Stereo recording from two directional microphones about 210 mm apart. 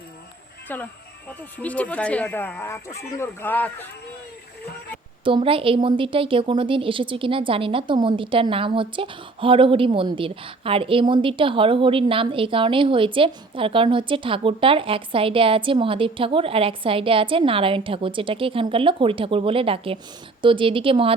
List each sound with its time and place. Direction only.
0.7 s speech: 10° left (ahead or behind)
5.2 s a woman's voice: 25° right (ahead or behind)